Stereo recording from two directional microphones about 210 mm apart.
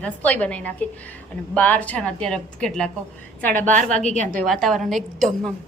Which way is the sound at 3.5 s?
35° right (ahead or behind).